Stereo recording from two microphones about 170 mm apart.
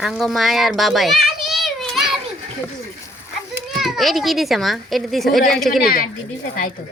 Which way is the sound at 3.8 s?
Centre (ahead or behind).